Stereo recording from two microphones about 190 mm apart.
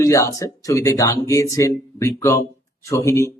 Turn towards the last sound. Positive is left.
turn(degrees=15)  # may be behind; listen again after turning